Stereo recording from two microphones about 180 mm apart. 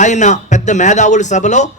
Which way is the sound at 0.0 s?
40° left (ahead or behind).